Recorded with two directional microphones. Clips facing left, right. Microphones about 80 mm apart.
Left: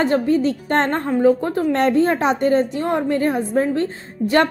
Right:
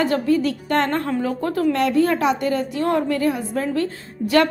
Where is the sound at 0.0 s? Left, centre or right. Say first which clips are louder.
Left 2 dB; left.